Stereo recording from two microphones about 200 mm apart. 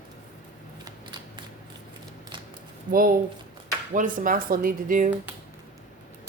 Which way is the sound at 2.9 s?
45° right (ahead or behind).